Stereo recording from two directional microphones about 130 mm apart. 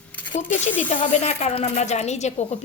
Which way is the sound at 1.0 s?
60° left (ahead or behind).